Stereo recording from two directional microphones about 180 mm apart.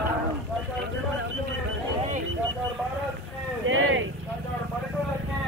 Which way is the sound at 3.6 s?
90° right.